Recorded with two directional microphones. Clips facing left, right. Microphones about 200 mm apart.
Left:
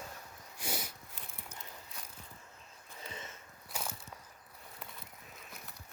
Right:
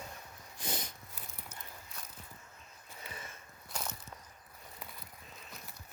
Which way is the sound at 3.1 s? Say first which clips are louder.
Left 1 dB; 25° left (ahead or behind).